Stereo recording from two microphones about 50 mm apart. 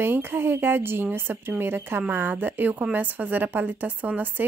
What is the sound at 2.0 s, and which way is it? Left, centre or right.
Speech, right.